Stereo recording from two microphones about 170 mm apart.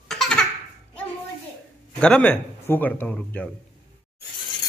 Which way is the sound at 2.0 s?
5° left (ahead or behind).